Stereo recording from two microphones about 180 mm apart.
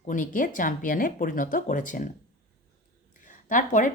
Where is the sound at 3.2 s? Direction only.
45° left (ahead or behind).